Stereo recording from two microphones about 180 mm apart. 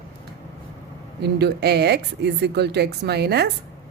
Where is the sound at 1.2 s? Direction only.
65° right (ahead or behind).